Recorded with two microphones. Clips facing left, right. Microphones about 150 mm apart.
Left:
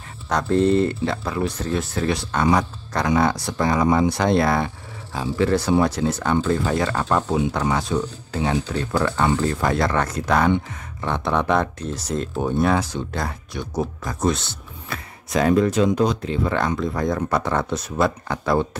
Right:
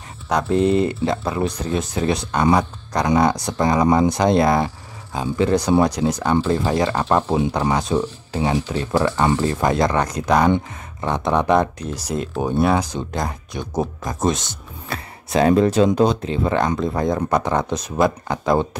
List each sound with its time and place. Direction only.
0.3 s speech: 10° right (ahead or behind)
6.3 s speech: 25° right (ahead or behind)
14.9 s speech: 30° right (ahead or behind)